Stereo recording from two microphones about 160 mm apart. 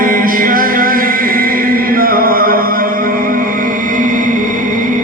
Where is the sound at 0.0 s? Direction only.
60° right (ahead or behind).